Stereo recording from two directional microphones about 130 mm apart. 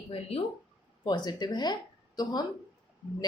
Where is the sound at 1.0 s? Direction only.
35° left (ahead or behind).